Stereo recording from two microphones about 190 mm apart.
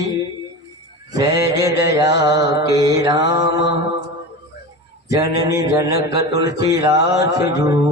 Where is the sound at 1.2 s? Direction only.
15° right (ahead or behind).